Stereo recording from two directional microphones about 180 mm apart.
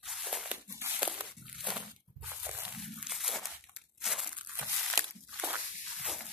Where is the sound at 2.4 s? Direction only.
5° right (ahead or behind).